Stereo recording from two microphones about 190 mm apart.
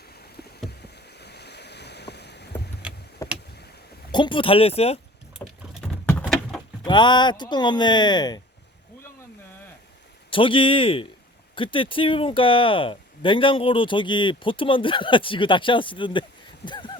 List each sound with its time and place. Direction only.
1.2 s boat: 60° left (ahead or behind)
3.2 s vehicle: 15° left (ahead or behind)
4.1 s speech: 25° left (ahead or behind)
5.7 s a sound: 5° left (ahead or behind)
6.8 s speech: 25° left (ahead or behind)
10.2 s speech: 25° left (ahead or behind)
16.6 s a sound: 25° left (ahead or behind)